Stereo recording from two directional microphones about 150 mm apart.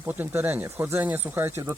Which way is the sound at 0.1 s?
10° right (ahead or behind).